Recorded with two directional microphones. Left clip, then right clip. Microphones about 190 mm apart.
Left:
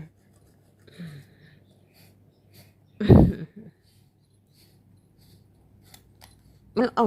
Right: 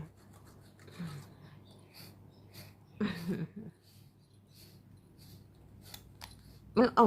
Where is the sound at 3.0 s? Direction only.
30° left (ahead or behind).